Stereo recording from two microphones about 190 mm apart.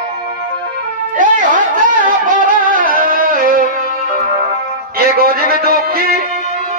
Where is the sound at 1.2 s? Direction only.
45° right (ahead or behind).